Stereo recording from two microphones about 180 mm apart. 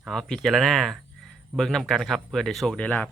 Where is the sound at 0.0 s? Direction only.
Centre (ahead or behind).